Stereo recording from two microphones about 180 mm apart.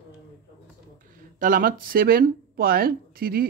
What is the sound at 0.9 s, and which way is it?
Speech, 50° right (ahead or behind).